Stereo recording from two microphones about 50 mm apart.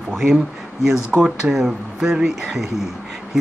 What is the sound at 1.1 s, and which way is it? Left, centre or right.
Speech, centre.